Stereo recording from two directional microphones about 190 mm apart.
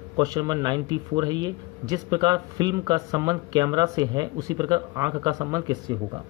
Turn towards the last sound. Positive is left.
turn(degrees=-20)  # may be behind; listen again after turning